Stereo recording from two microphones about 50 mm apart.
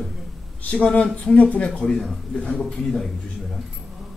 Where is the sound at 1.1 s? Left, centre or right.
Left.